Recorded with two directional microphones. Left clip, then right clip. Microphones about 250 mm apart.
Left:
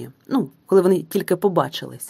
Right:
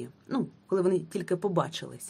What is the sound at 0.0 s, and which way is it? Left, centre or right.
Speech, left.